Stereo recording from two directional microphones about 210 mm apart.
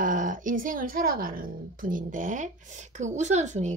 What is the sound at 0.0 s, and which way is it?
Speech, 40° right (ahead or behind).